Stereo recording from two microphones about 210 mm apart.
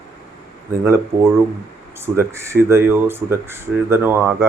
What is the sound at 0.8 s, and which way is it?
Speech, 15° right (ahead or behind).